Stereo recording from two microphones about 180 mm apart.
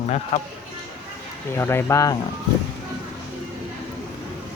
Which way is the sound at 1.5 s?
15° left (ahead or behind).